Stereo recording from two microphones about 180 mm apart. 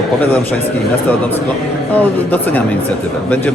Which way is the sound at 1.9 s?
10° left (ahead or behind).